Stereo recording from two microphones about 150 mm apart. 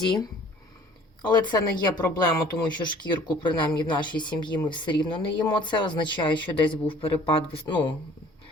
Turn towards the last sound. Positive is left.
turn(degrees=35)  # may be behind; listen again after turning